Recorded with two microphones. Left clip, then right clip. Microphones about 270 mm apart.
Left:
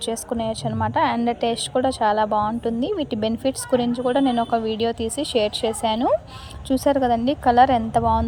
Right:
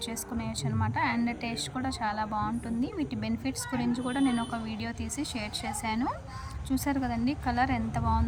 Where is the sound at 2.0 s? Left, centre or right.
Left.